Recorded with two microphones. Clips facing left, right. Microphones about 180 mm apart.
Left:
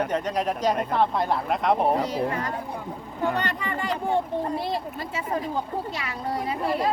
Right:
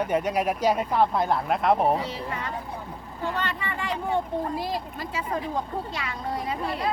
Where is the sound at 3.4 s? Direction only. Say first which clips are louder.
Left 2 dB; 40° left (ahead or behind).